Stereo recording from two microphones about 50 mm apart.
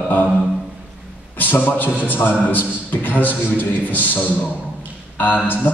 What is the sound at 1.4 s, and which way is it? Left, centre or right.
A man's voice, left.